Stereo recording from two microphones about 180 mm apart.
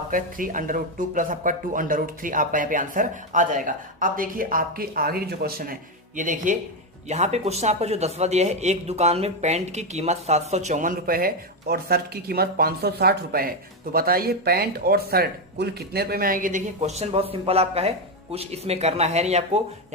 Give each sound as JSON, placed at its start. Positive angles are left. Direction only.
{"t": 0.1, "sound": "speech", "side_deg": -50}